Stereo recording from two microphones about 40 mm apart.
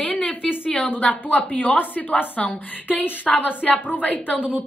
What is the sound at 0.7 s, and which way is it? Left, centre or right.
A woman's voice, left.